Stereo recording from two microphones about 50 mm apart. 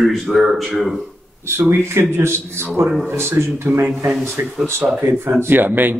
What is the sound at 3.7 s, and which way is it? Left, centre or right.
Speech, right.